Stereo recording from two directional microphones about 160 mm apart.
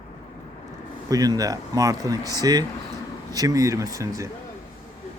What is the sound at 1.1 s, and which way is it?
Speech, 20° right (ahead or behind).